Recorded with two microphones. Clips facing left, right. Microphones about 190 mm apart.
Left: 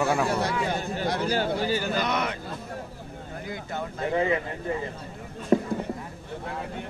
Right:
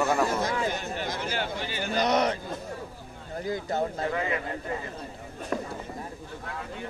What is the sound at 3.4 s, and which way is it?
Speech, 40° right (ahead or behind).